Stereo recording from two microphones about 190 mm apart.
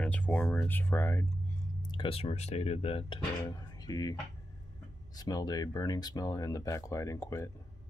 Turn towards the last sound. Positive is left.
turn(degrees=15)  # may be behind; listen again after turning